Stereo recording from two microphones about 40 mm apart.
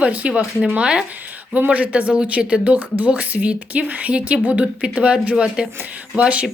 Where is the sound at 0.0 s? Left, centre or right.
Right.